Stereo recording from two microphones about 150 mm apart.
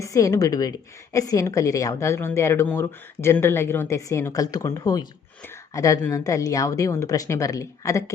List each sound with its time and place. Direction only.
0.0 s a woman's voice: 20° left (ahead or behind)